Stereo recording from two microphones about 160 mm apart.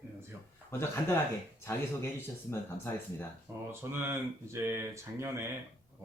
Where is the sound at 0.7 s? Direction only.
15° left (ahead or behind).